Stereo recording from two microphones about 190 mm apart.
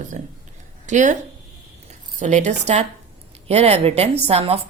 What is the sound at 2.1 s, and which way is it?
Speech, 40° right (ahead or behind).